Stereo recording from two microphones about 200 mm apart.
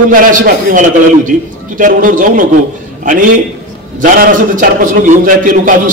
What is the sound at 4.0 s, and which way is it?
A man's voice, 45° right (ahead or behind).